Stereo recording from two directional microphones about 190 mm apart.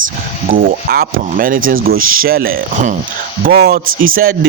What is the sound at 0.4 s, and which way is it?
Speech, 50° right (ahead or behind).